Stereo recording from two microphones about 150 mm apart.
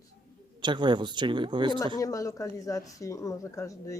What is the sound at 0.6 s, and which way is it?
Speech, 30° right (ahead or behind).